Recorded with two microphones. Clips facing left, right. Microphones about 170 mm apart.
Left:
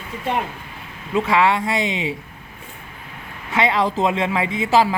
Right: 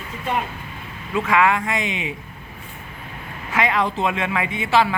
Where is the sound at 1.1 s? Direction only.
30° left (ahead or behind).